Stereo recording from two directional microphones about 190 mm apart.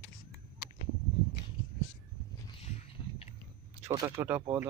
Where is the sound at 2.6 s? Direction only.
35° left (ahead or behind).